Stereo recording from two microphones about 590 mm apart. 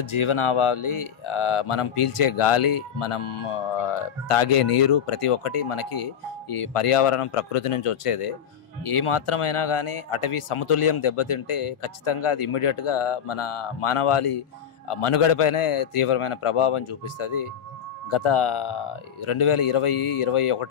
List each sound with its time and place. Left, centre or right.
0.1 s speech: left